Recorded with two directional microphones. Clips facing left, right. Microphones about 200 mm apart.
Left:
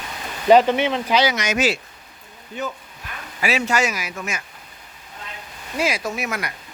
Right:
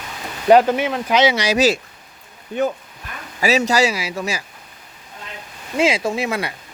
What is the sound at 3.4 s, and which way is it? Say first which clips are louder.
Speech: right 5 dB; 40° right (ahead or behind).